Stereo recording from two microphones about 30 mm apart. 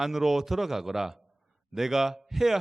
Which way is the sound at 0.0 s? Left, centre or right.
Centre.